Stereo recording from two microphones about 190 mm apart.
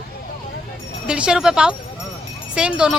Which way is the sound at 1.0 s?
5° right (ahead or behind).